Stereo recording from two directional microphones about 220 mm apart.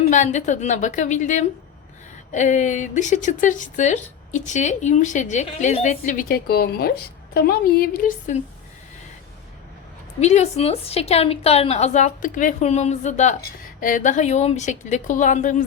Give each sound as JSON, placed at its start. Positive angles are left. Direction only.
{"t": 0.0, "sound": "a woman's voice", "side_deg": 30}
{"t": 10.2, "sound": "a woman's voice", "side_deg": 30}